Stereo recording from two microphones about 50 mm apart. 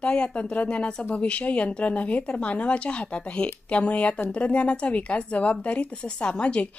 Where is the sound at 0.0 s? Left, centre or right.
Left.